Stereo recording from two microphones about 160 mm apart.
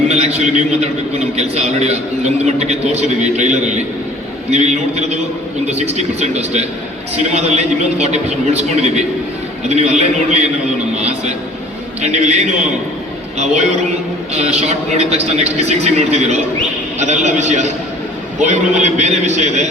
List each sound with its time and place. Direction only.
0.1 s a man's voice: 40° right (ahead or behind)
10.9 s a sound: 45° right (ahead or behind)
12.0 s a man's voice: 45° right (ahead or behind)